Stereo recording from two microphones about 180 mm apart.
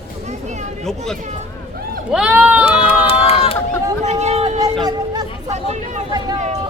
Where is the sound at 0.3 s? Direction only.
40° right (ahead or behind).